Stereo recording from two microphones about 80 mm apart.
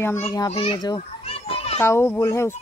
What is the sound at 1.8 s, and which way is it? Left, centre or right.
Speech, left.